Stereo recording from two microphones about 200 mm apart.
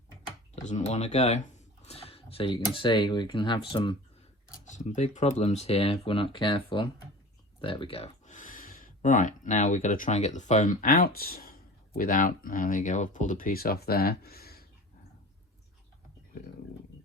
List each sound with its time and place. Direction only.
0.5 s speech: 35° left (ahead or behind)
4.5 s speech: 40° left (ahead or behind)